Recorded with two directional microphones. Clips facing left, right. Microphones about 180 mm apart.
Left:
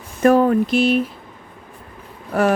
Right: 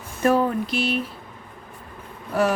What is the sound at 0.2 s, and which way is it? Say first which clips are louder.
Speech: left 6 dB; 50° left (ahead or behind).